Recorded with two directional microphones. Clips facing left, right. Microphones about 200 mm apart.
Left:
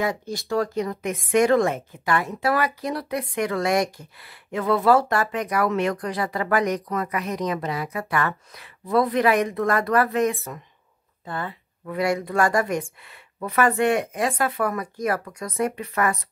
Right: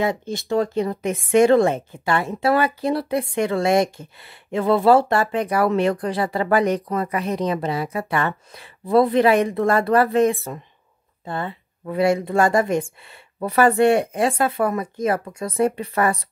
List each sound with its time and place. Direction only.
0.0 s speech: 25° right (ahead or behind)